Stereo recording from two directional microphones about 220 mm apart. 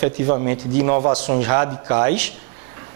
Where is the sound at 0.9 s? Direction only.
30° right (ahead or behind).